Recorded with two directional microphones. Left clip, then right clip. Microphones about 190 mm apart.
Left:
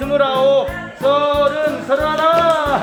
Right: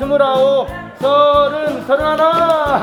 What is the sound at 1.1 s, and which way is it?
Music, 35° right (ahead or behind).